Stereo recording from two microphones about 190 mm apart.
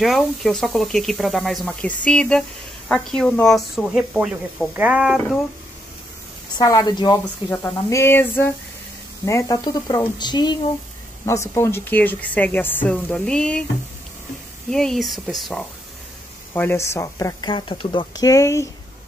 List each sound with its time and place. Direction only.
0.0 s speech: centre (ahead or behind)
6.6 s speech: 20° left (ahead or behind); by 13.7 s 5° left (ahead or behind)
14.7 s speech: centre (ahead or behind)
16.5 s speech: 10° left (ahead or behind)